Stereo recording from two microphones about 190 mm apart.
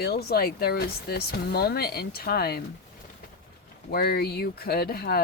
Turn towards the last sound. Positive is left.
turn(degrees=55)  # may be behind; listen again after turning